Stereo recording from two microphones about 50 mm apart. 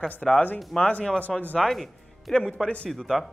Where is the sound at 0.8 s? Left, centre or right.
Left.